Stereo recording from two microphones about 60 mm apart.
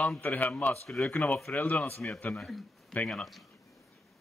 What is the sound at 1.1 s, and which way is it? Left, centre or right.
Speech, left.